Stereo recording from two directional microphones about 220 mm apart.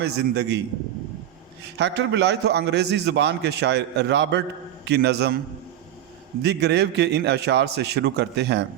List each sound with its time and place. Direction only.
0.0 s a man's voice: 50° right (ahead or behind)
1.8 s a man's voice: 50° right (ahead or behind)
6.4 s a man's voice: 50° right (ahead or behind)